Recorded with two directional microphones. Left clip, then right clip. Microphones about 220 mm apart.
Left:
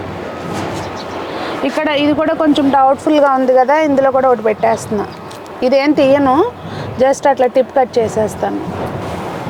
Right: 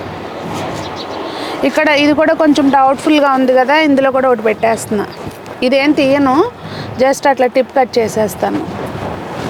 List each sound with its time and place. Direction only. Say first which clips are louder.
1.6 s speech: right 4 dB; 20° right (ahead or behind)